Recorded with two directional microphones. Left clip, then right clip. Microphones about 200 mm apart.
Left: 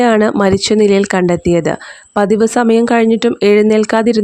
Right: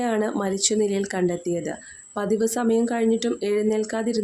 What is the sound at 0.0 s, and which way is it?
Speech, 45° left (ahead or behind).